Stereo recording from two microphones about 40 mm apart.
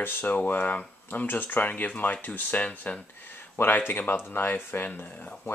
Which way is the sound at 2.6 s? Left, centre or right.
Left.